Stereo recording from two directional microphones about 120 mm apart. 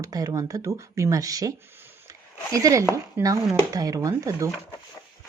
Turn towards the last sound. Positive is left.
turn(degrees=-25)  # may be behind; listen again after turning